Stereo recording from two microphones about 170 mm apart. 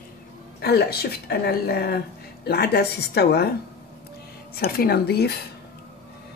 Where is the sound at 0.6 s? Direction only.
70° left (ahead or behind).